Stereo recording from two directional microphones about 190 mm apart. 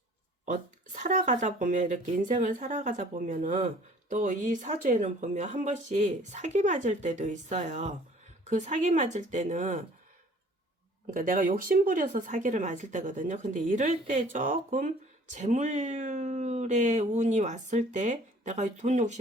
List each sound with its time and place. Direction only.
0.4 s speech: 40° right (ahead or behind)
11.0 s speech: 45° right (ahead or behind)